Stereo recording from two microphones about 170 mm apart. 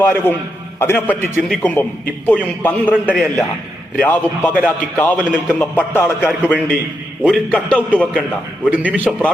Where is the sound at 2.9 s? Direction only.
5° right (ahead or behind).